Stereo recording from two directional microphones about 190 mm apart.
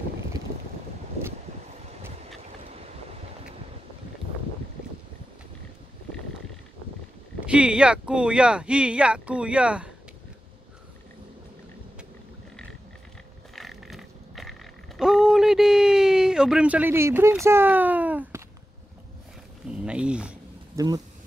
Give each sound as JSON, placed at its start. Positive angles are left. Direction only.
{"t": 7.3, "sound": "speech", "side_deg": -5}
{"t": 13.6, "sound": "a sound", "side_deg": 0}
{"t": 15.0, "sound": "speech", "side_deg": 0}
{"t": 19.7, "sound": "speech", "side_deg": -5}
{"t": 20.7, "sound": "speech", "side_deg": -20}